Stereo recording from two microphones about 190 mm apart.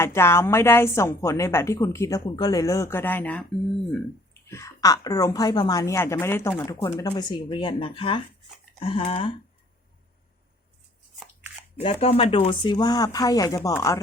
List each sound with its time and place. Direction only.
0.0 s a woman's voice: 15° left (ahead or behind)
4.4 s a woman's voice: 15° left (ahead or behind)
11.8 s speech: 30° left (ahead or behind); by 14.0 s 15° left (ahead or behind)